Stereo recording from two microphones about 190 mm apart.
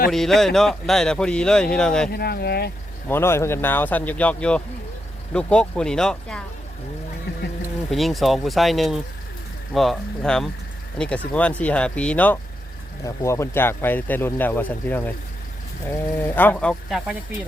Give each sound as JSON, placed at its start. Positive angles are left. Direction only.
{"t": 0.1, "sound": "speech", "side_deg": 0}
{"t": 2.1, "sound": "speech", "side_deg": 55}
{"t": 3.1, "sound": "speech", "side_deg": 15}
{"t": 7.9, "sound": "speech", "side_deg": 0}